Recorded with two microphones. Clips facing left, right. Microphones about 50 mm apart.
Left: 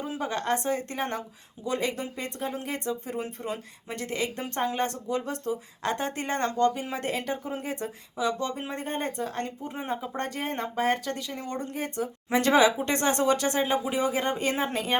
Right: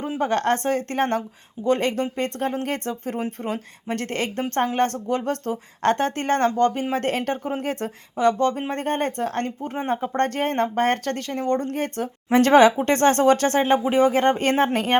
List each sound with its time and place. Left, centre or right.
0.2 s speech: right
1.6 s speech: right